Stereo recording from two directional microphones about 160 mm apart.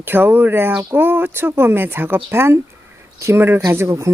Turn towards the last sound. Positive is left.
turn(degrees=-15)  # may be behind; listen again after turning